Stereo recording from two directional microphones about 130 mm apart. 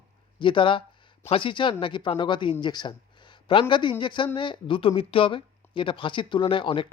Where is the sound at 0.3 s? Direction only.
40° left (ahead or behind).